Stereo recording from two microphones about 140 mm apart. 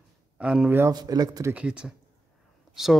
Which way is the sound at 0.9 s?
30° right (ahead or behind).